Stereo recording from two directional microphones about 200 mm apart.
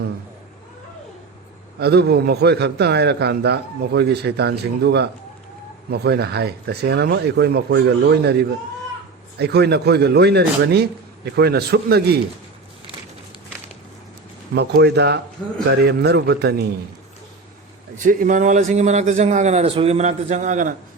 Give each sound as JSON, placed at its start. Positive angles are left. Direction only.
{"t": 1.8, "sound": "a man's voice", "side_deg": -55}
{"t": 14.5, "sound": "a man's voice", "side_deg": -55}
{"t": 15.4, "sound": "speech", "side_deg": 5}
{"t": 15.7, "sound": "a man's voice", "side_deg": -55}
{"t": 17.9, "sound": "speech", "side_deg": -40}